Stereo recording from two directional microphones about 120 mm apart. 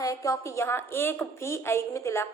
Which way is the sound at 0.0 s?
30° left (ahead or behind).